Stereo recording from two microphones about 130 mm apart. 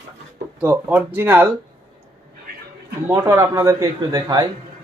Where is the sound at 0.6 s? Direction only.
10° right (ahead or behind).